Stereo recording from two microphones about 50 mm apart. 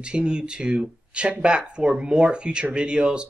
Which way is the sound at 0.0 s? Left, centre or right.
Centre.